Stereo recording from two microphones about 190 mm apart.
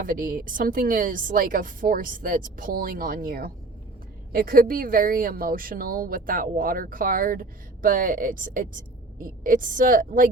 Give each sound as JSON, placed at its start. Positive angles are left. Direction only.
{"t": 0.0, "sound": "speech", "side_deg": -45}